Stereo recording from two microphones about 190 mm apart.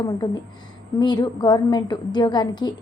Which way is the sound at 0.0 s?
20° left (ahead or behind).